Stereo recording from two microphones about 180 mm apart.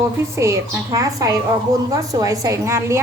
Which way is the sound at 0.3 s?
15° right (ahead or behind).